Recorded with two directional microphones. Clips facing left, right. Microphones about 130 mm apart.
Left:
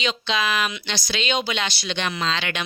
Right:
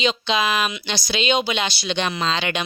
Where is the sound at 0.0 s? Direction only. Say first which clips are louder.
Right 3 dB; 20° right (ahead or behind).